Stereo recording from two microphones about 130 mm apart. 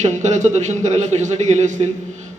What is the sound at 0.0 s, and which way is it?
A man's voice, 65° right (ahead or behind).